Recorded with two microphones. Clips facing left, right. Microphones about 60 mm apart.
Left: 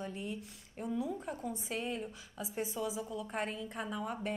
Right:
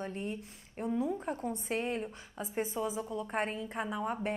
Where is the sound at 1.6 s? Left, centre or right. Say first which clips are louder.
Right 5 dB; right.